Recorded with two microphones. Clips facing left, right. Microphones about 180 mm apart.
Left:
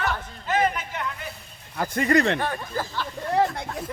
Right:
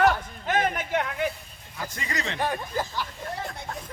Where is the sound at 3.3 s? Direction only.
80° left.